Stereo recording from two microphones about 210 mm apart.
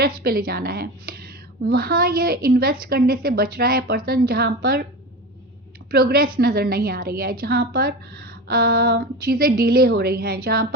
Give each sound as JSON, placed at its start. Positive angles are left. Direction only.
{"t": 0.0, "sound": "a woman's voice", "side_deg": -45}
{"t": 5.9, "sound": "a woman's voice", "side_deg": -45}